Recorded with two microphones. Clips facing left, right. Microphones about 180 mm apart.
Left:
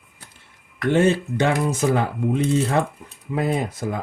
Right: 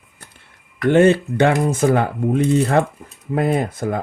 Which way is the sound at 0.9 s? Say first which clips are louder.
Right 5 dB; 65° right (ahead or behind).